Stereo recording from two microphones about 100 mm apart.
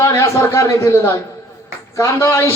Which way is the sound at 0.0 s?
30° left (ahead or behind).